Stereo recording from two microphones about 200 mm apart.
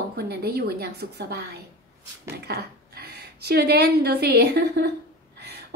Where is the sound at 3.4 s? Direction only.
55° right (ahead or behind).